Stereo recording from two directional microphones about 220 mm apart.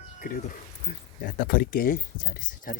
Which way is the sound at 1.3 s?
40° left (ahead or behind).